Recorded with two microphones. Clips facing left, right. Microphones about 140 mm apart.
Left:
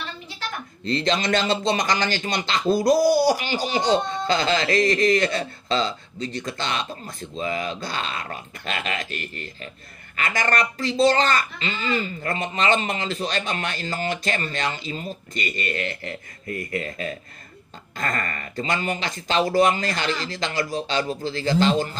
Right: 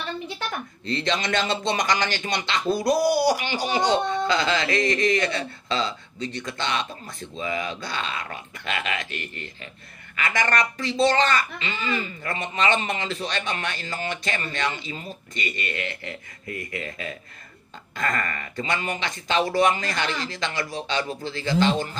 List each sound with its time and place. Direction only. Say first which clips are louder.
0.8 s speech: left 4 dB; 35° left (ahead or behind)